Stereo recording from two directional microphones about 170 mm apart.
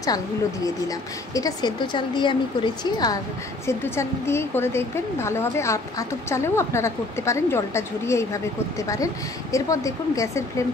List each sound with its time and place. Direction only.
0.0 s a woman's voice: 20° left (ahead or behind)